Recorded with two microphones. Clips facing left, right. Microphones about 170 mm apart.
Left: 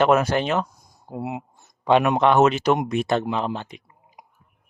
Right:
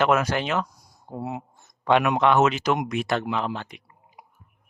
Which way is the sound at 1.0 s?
10° left (ahead or behind).